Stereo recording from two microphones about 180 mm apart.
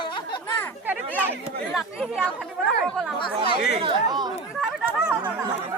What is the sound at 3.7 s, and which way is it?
Speech, 25° right (ahead or behind).